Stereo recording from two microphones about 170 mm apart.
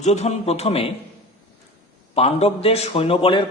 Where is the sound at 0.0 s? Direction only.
40° left (ahead or behind).